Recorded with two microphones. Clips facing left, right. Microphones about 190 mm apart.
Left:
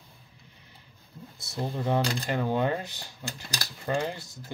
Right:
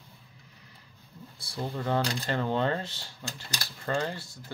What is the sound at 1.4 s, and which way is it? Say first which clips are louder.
Speech: left 2 dB; 20° left (ahead or behind).